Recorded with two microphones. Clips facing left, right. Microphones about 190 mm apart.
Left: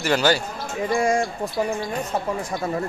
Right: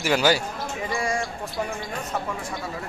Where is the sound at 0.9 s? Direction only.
45° left (ahead or behind).